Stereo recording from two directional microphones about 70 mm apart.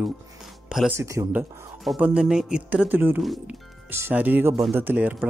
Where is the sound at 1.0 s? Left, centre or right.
Right.